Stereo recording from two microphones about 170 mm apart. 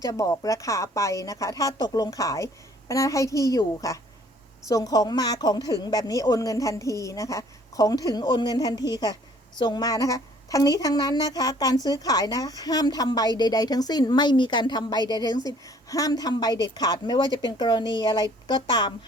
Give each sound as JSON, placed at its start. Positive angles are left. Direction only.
{"t": 0.0, "sound": "a woman's voice", "side_deg": 20}